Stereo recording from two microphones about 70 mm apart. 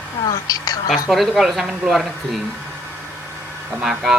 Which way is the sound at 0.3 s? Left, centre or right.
Left.